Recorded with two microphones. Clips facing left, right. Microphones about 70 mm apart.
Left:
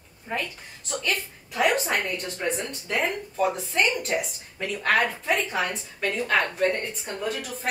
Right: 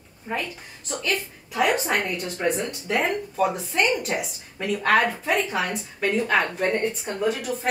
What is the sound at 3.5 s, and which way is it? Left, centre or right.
A woman's voice, centre.